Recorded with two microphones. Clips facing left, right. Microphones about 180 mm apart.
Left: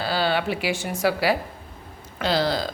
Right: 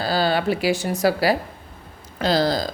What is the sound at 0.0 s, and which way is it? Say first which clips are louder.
A woman's voice: right 3 dB; 40° right (ahead or behind).